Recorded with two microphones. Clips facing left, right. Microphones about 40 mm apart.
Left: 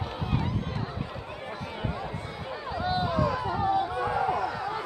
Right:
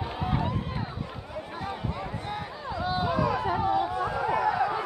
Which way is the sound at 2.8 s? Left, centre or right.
Centre.